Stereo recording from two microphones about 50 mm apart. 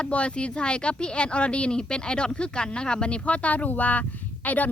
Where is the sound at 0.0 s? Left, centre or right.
Left.